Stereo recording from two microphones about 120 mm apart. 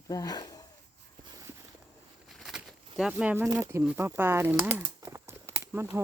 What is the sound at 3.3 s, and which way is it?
Speech, 20° right (ahead or behind).